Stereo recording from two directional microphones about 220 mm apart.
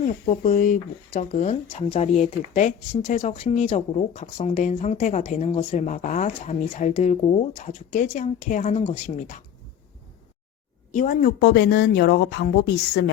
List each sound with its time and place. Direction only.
0.0 s speech: 35° left (ahead or behind)
10.9 s speech: 35° left (ahead or behind)